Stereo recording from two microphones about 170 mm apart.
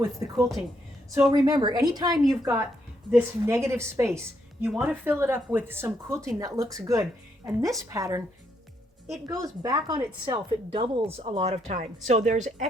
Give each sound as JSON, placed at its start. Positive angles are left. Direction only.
{"t": 0.0, "sound": "speech", "side_deg": -15}
{"t": 9.2, "sound": "a woman's voice", "side_deg": -20}